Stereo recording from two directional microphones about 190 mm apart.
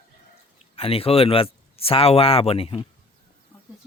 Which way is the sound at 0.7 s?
30° left (ahead or behind).